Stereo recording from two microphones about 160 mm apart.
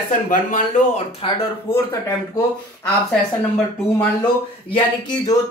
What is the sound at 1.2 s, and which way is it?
Speech, 35° left (ahead or behind).